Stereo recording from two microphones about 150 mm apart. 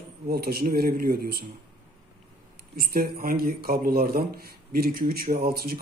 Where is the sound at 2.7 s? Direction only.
80° right.